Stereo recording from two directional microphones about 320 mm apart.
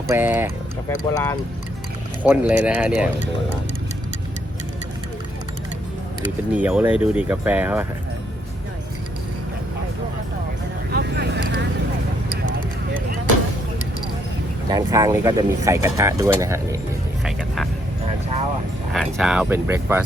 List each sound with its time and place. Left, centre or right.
0.1 s speech: centre
1.1 s speech: centre
2.2 s speech: centre
6.5 s speech: centre
10.9 s vehicle: right
14.7 s speech: centre
17.2 s speech: centre
18.9 s speech: centre